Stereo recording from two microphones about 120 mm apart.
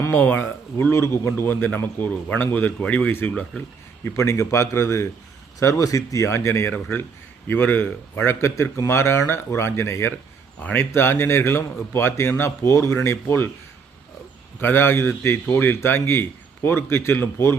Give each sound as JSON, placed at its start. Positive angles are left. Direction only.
{"t": 0.0, "sound": "a man's voice", "side_deg": 15}
{"t": 14.6, "sound": "a man's voice", "side_deg": 20}